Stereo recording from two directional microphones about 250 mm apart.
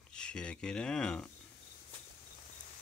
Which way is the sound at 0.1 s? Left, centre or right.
Centre.